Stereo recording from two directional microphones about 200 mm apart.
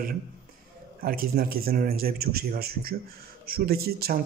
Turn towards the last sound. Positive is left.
turn(degrees=-50)  # may be behind; listen again after turning